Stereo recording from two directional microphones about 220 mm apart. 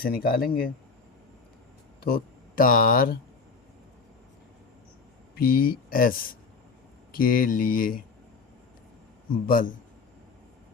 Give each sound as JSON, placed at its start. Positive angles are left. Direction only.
{"t": 0.0, "sound": "speech", "side_deg": 45}
{"t": 2.0, "sound": "speech", "side_deg": 40}
{"t": 5.5, "sound": "speech", "side_deg": 40}
{"t": 9.3, "sound": "speech", "side_deg": 40}